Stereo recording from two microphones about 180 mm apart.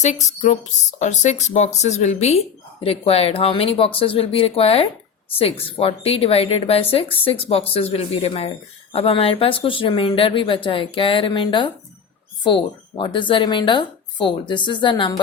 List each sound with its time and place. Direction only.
0.0 s speech: 40° left (ahead or behind)